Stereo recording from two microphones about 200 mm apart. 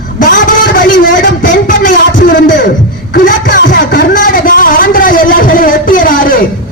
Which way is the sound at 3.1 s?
60° left (ahead or behind).